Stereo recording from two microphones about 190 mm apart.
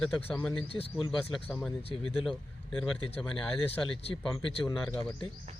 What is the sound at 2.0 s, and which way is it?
Speech, centre (ahead or behind).